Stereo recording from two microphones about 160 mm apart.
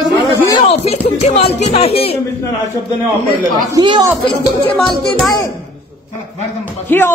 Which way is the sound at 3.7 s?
25° right (ahead or behind).